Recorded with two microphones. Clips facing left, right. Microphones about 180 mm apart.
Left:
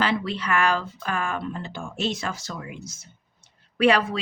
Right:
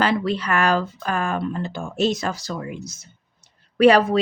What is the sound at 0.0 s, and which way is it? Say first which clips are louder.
Speech: right 4 dB; 40° right (ahead or behind).